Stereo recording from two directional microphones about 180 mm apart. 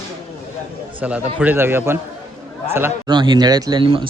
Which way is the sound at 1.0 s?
5° right (ahead or behind).